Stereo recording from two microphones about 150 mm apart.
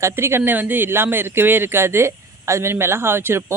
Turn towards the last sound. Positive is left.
turn(degrees=-15)  # may be behind; listen again after turning